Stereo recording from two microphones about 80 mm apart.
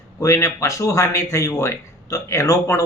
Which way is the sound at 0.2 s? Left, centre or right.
Left.